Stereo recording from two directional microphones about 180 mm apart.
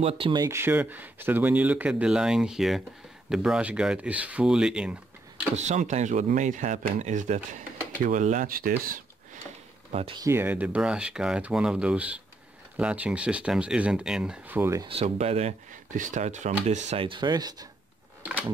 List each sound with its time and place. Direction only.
0.0 s speech: 30° right (ahead or behind)
0.4 s speech: 15° right (ahead or behind)
5.6 s speech: 40° right (ahead or behind)
9.9 s speech: 30° right (ahead or behind)
10.2 s speech: 10° right (ahead or behind)
14.9 s speech: 35° right (ahead or behind)